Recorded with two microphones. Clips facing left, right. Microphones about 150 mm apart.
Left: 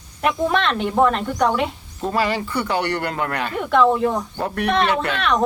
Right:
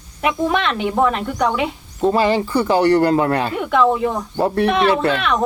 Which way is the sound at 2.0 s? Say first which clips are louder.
Right 6 dB; 25° right (ahead or behind).